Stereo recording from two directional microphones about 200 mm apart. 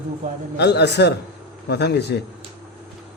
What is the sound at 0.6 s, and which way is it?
A man's voice, 55° left (ahead or behind).